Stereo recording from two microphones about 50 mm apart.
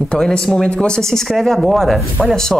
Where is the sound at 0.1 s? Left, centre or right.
Centre.